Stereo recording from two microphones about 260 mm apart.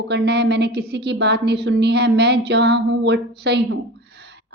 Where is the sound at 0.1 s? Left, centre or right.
Right.